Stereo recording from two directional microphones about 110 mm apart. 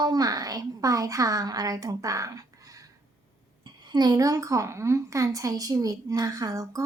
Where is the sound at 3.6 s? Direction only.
45° right (ahead or behind).